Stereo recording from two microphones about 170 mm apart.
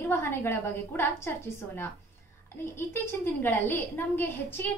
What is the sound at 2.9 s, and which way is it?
A woman's voice, 15° left (ahead or behind).